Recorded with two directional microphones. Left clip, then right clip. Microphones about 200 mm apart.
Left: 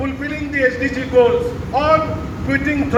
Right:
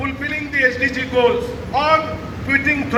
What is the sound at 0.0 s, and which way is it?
A man's voice, 25° left (ahead or behind).